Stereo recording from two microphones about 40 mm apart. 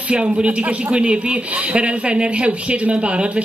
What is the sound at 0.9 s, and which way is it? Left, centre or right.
A woman's voice, right.